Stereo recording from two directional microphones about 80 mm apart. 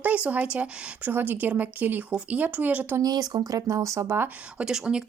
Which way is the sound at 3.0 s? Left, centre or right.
Right.